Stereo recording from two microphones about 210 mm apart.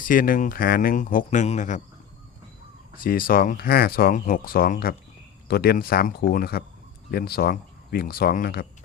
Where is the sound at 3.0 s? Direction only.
45° left (ahead or behind).